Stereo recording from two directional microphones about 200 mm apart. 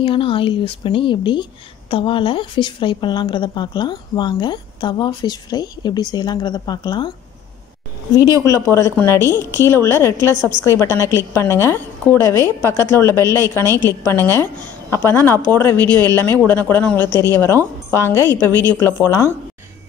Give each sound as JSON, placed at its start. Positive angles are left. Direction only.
{"t": 0.0, "sound": "a woman's voice", "side_deg": 25}
{"t": 8.2, "sound": "a woman's voice", "side_deg": 15}
{"t": 13.7, "sound": "a woman's voice", "side_deg": -15}
{"t": 14.0, "sound": "a woman's voice", "side_deg": 10}